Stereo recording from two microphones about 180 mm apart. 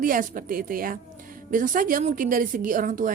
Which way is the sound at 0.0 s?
50° right (ahead or behind).